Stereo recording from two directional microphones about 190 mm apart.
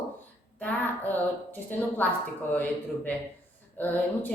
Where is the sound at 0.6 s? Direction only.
10° left (ahead or behind).